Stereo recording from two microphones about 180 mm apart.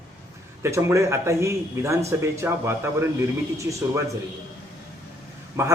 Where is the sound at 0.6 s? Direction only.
15° right (ahead or behind).